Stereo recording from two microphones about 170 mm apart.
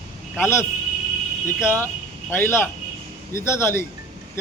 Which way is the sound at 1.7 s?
15° left (ahead or behind).